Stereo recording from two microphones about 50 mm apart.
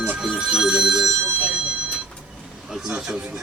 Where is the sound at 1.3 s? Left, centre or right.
Centre.